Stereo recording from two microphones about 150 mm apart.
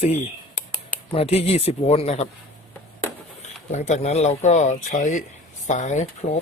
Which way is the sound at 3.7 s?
50° left (ahead or behind).